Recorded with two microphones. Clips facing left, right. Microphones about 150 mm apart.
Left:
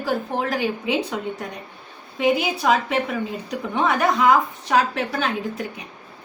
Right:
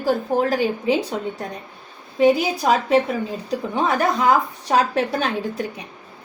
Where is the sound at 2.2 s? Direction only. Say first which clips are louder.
Right 4 dB; 40° right (ahead or behind).